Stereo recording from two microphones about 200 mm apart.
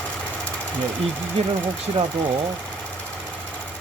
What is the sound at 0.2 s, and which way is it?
Engine, 5° left (ahead or behind).